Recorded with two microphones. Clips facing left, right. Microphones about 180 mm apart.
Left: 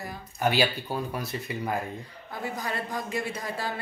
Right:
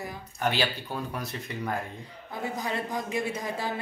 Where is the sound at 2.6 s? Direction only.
20° right (ahead or behind).